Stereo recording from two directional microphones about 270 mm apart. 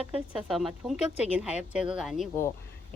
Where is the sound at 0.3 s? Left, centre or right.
Centre.